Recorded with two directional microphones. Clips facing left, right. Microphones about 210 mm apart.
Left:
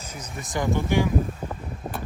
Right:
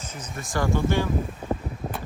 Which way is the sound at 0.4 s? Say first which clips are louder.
Right 1 dB; 20° left (ahead or behind).